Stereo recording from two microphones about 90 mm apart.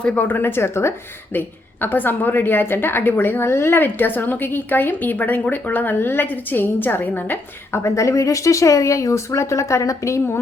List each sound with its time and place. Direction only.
0.0 s a woman's voice: 15° left (ahead or behind); by 10.3 s 35° left (ahead or behind)